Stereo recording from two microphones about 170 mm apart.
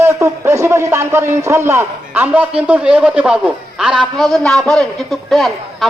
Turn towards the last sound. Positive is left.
turn(degrees=0)  # may be behind; listen again after turning